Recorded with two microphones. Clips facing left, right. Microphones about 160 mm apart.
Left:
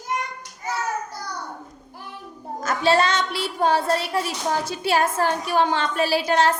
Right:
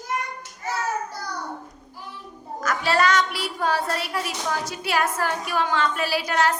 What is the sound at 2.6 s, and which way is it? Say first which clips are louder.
A child's voice: left 2 dB; 25° left (ahead or behind).